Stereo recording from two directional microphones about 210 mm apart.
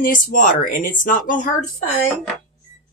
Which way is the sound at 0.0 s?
40° left (ahead or behind).